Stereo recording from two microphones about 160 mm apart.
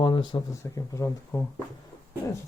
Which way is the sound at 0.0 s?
30° left (ahead or behind).